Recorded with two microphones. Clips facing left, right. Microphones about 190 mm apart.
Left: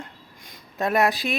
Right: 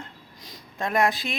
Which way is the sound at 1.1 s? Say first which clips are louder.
Left 5 dB; 20° right (ahead or behind).